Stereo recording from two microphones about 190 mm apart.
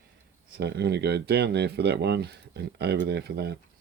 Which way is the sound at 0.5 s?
60° right (ahead or behind).